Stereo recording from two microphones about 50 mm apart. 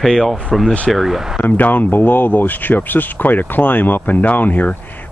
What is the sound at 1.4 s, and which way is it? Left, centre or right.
Speech, left.